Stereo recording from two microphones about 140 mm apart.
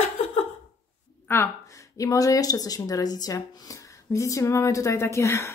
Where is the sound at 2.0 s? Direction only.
25° left (ahead or behind).